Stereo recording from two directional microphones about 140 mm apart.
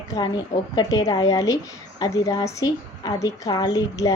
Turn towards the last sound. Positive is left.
turn(degrees=25)  # may be behind; listen again after turning